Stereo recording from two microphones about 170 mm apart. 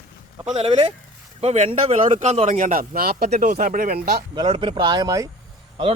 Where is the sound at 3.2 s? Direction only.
45° right (ahead or behind).